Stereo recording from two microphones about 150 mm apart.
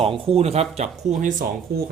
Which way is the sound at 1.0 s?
55° right (ahead or behind).